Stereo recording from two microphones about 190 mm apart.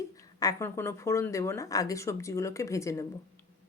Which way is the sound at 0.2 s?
20° left (ahead or behind).